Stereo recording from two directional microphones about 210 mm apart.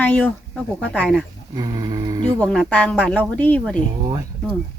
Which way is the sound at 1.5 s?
20° right (ahead or behind).